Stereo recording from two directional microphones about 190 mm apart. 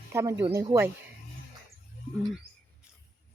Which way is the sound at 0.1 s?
15° right (ahead or behind).